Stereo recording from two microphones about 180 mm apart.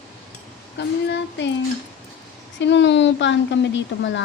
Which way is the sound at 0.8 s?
75° left (ahead or behind).